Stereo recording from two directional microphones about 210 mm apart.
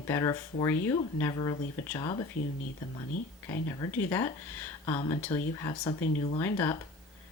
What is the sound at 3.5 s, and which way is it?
Speech, 15° left (ahead or behind).